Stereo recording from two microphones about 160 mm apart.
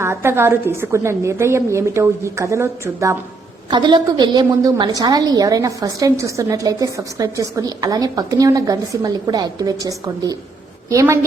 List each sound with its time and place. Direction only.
0.0 s a woman's voice: 15° right (ahead or behind)
3.7 s a woman's voice: 30° right (ahead or behind)